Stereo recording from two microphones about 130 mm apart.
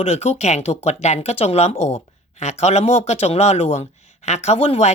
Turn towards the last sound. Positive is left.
turn(degrees=50)  # may be behind; listen again after turning